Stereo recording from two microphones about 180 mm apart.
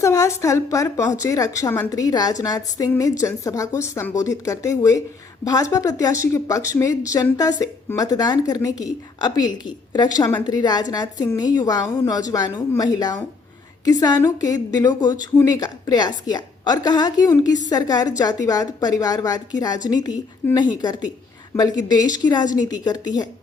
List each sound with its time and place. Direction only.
0.0 s a woman's voice: 15° left (ahead or behind)